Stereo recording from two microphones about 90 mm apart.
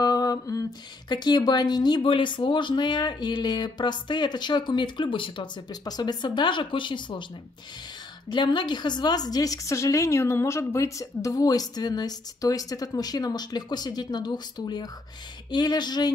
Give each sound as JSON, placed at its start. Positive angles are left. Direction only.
{"t": 0.0, "sound": "a sound", "side_deg": 45}
{"t": 1.0, "sound": "speech", "side_deg": 55}
{"t": 5.7, "sound": "speech", "side_deg": 50}
{"t": 8.3, "sound": "a woman's voice", "side_deg": 60}